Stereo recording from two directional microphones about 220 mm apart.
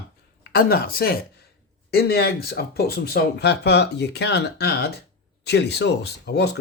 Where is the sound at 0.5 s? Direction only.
45° left (ahead or behind).